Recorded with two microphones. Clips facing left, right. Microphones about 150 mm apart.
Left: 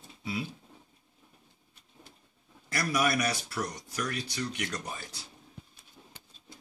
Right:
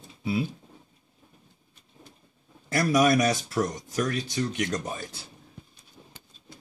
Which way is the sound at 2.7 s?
40° right (ahead or behind).